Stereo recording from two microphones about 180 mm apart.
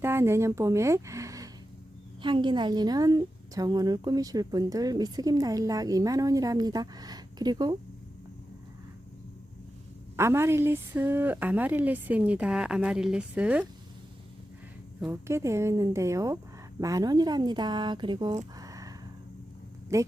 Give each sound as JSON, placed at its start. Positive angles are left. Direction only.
{"t": 0.0, "sound": "a woman's voice", "side_deg": -15}
{"t": 10.2, "sound": "a woman's voice", "side_deg": -15}
{"t": 15.0, "sound": "a woman's voice", "side_deg": -15}
{"t": 18.5, "sound": "a sound", "side_deg": -20}
{"t": 19.9, "sound": "a woman's voice", "side_deg": -15}